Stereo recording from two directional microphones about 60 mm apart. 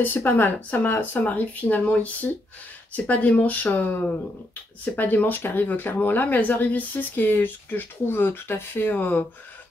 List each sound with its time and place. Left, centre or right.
0.0 s speech: left